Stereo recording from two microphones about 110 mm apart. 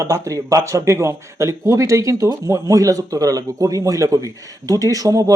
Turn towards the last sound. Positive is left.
turn(degrees=-35)  # may be behind; listen again after turning